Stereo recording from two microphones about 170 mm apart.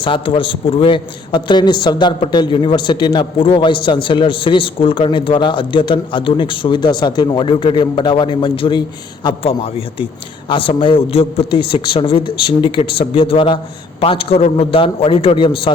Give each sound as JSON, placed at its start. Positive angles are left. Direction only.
{"t": 0.0, "sound": "a man's voice", "side_deg": 30}